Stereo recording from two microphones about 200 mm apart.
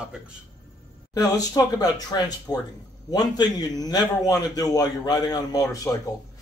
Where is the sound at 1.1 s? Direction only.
20° left (ahead or behind).